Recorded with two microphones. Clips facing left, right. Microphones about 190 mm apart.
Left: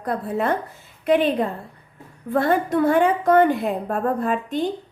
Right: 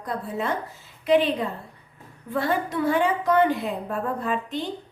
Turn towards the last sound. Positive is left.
turn(degrees=50)  # may be behind; listen again after turning